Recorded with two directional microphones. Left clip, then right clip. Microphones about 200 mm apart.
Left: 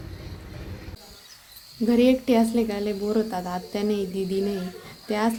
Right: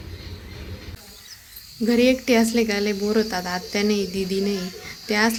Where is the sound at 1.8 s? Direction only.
Centre (ahead or behind).